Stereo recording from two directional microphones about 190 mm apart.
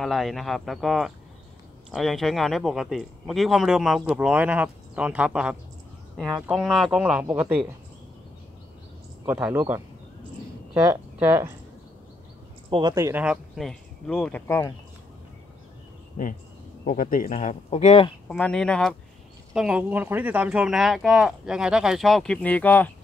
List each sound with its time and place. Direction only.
0.0 s speech: centre (ahead or behind)
9.2 s speech: 10° right (ahead or behind)
12.6 s speech: 25° right (ahead or behind)
12.9 s speech: 10° right (ahead or behind); by 14.4 s 5° left (ahead or behind)
16.8 s speech: 45° left (ahead or behind)
18.3 s speech: 5° left (ahead or behind)